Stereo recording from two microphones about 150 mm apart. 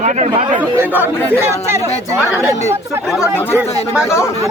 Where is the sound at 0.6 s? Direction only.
10° right (ahead or behind).